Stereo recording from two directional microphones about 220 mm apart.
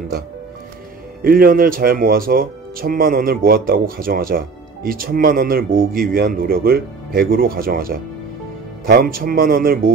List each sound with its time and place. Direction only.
1.2 s speech: 40° right (ahead or behind)